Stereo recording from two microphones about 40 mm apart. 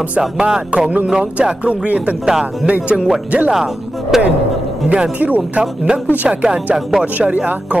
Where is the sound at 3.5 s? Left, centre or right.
Centre.